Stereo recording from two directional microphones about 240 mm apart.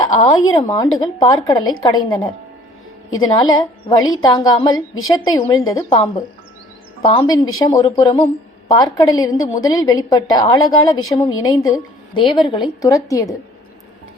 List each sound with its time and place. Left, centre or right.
0.0 s a woman's voice: centre